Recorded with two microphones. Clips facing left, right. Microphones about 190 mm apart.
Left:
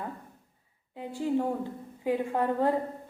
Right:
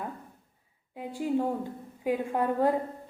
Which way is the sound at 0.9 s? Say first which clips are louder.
Even; 15° right (ahead or behind).